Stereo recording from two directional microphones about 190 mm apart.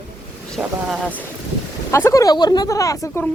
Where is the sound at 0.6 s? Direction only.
Centre (ahead or behind).